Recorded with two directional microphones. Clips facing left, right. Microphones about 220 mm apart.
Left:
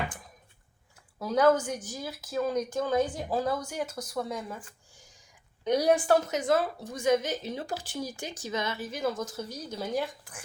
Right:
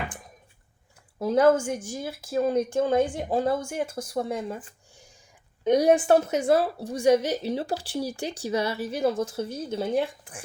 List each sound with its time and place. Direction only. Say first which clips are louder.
1.2 s speech: right 4 dB; 25° right (ahead or behind)